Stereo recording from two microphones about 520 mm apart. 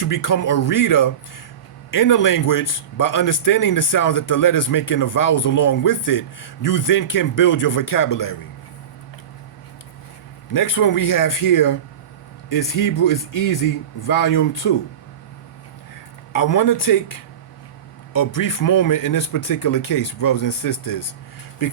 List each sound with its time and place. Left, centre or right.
0.0 s a man's voice: left
10.5 s a man's voice: left
16.3 s a man's voice: left